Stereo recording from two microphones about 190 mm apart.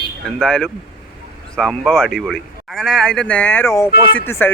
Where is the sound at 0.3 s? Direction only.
5° left (ahead or behind).